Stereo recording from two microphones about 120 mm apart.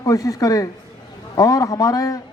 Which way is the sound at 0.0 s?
30° left (ahead or behind).